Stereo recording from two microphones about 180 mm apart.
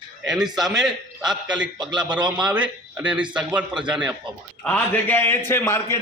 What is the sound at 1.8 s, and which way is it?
Speech, 25° right (ahead or behind).